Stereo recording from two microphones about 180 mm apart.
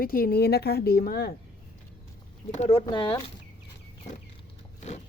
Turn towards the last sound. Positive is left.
turn(degrees=25)  # may be behind; listen again after turning